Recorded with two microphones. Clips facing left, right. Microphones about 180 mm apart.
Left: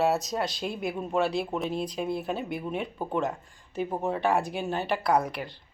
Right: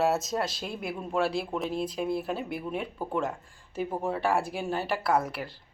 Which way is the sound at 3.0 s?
20° left (ahead or behind).